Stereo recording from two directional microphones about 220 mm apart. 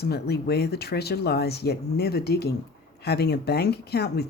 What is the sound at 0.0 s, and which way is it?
Speech, 45° left (ahead or behind).